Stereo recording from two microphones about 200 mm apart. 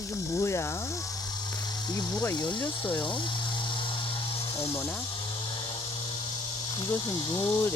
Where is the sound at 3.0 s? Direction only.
25° left (ahead or behind).